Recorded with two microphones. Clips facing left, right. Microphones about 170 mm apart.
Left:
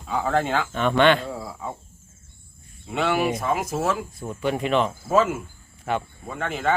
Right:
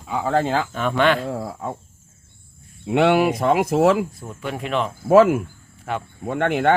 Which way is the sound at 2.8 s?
65° right (ahead or behind).